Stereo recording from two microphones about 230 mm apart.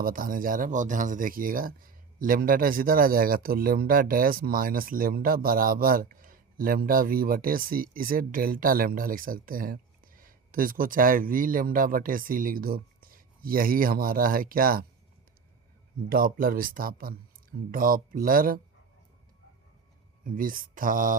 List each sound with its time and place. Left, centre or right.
0.0 s speech: right
16.0 s speech: right
20.2 s speech: right